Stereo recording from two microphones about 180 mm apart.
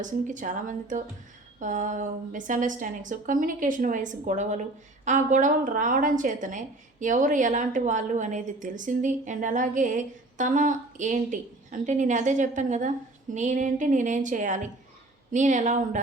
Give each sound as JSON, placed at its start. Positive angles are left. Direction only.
{"t": 0.0, "sound": "a woman's voice", "side_deg": -45}